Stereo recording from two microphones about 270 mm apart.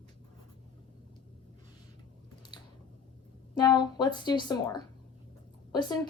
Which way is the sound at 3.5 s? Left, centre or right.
Centre.